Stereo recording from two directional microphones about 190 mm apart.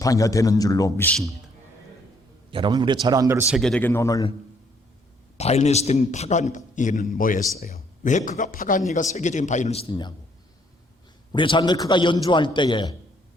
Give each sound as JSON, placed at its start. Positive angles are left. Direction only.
{"t": 0.0, "sound": "a man's voice", "side_deg": 15}
{"t": 2.5, "sound": "a man's voice", "side_deg": -25}
{"t": 3.5, "sound": "a man's voice", "side_deg": 5}
{"t": 5.4, "sound": "speech", "side_deg": 35}
{"t": 11.3, "sound": "a man's voice", "side_deg": 25}